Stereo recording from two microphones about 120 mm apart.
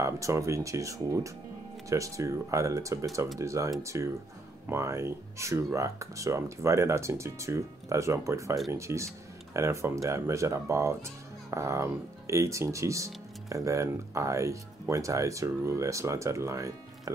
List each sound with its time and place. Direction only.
0.0 s speech: 25° right (ahead or behind)